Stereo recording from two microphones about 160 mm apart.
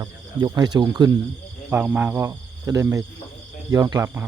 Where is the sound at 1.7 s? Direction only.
10° right (ahead or behind).